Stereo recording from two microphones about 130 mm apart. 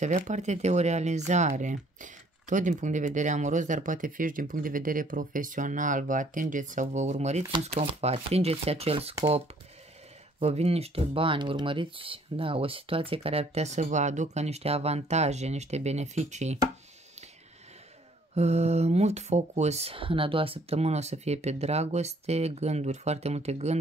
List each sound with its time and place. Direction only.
0.0 s speech: 65° right (ahead or behind); by 9.1 s 50° right (ahead or behind)
10.4 s speech: 50° right (ahead or behind)
18.3 s speech: 55° right (ahead or behind)